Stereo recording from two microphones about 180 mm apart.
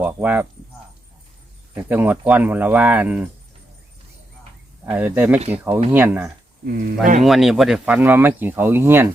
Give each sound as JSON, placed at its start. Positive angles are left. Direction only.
{"t": 0.0, "sound": "speech", "side_deg": -10}
{"t": 1.7, "sound": "speech", "side_deg": -10}
{"t": 4.9, "sound": "speech", "side_deg": -10}
{"t": 6.7, "sound": "speech", "side_deg": -55}
{"t": 7.2, "sound": "speech", "side_deg": 0}